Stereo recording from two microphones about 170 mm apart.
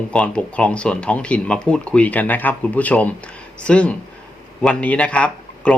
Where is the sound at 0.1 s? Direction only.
5° left (ahead or behind).